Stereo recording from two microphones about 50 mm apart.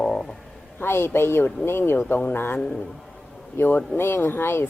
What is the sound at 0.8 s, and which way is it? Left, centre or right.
Speech, left.